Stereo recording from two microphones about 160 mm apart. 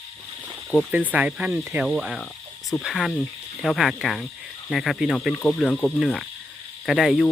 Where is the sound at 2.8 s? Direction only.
Centre (ahead or behind).